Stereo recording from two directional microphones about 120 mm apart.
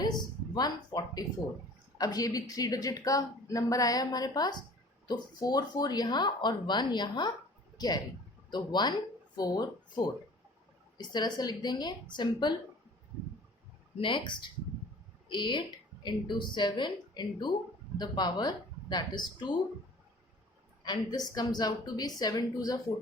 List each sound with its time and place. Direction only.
0.0 s a sound: 35° left (ahead or behind)
2.0 s a woman's voice: 30° left (ahead or behind)
14.0 s a woman's voice: 40° left (ahead or behind)
20.8 s a woman's voice: 35° left (ahead or behind)